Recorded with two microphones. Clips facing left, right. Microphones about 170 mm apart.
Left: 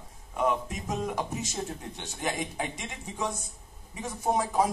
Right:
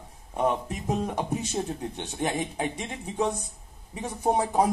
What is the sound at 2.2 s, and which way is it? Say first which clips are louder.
A man's voice: right 4 dB; 35° right (ahead or behind).